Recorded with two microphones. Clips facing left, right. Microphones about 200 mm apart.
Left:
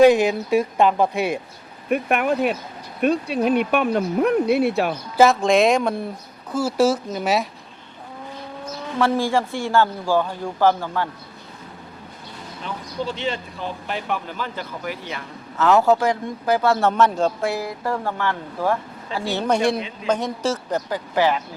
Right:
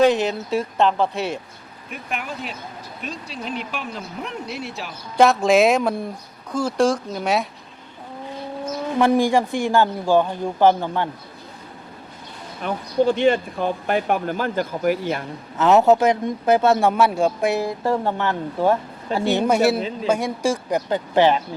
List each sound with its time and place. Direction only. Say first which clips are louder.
0.0 s speech: left 3 dB; 10° left (ahead or behind)
1.9 s speech: left 11 dB; 60° left (ahead or behind)
5.1 s speech: right 1 dB; centre (ahead or behind)
9.0 s a man's voice: right 3 dB; 15° right (ahead or behind)
12.6 s speech: right 9 dB; 55° right (ahead or behind)
15.5 s speech: right 2 dB; 20° right (ahead or behind)
16.8 s a man's voice: right 1 dB; 10° right (ahead or behind)
17.5 s speech: right 4 dB; 25° right (ahead or behind)
19.5 s a man's voice: left 1 dB; 5° right (ahead or behind)
20.9 s speech: right 4 dB; 25° right (ahead or behind)